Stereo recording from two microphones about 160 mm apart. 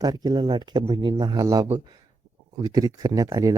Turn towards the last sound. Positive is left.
turn(degrees=-20)  # may be behind; listen again after turning